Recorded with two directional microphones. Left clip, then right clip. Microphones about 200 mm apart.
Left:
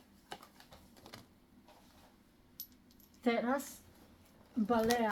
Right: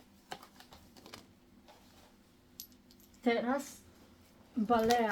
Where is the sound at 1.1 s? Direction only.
5° right (ahead or behind).